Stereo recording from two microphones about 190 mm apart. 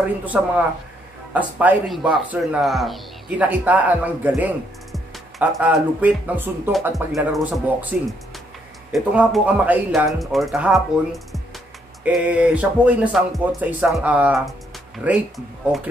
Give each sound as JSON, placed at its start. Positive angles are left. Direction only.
{"t": 0.2, "sound": "speech", "side_deg": -10}
{"t": 8.9, "sound": "speech", "side_deg": -5}